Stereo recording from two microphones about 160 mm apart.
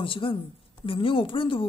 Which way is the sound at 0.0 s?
35° left (ahead or behind).